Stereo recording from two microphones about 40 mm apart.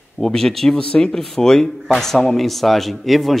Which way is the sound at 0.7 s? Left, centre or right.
Left.